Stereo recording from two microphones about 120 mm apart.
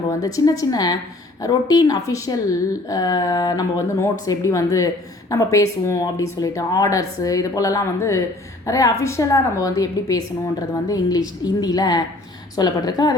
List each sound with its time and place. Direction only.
0.1 s a woman's voice: 30° left (ahead or behind)